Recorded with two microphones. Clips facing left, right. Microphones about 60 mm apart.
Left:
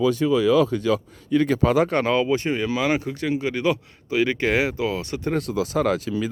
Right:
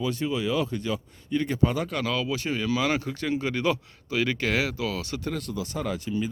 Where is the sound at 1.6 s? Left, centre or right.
Left.